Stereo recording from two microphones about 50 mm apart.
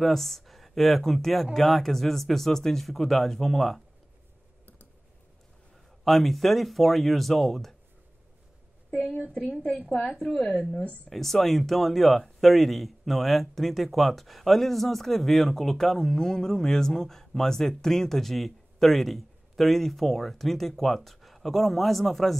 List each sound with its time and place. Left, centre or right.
0.0 s speech: centre
6.0 s speech: centre
9.3 s a woman's voice: centre
11.1 s speech: centre